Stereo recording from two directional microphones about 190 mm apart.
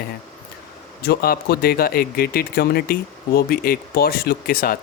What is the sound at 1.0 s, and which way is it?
Speech, 55° left (ahead or behind).